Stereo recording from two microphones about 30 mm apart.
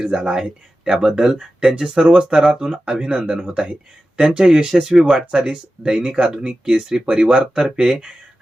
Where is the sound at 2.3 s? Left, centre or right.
Right.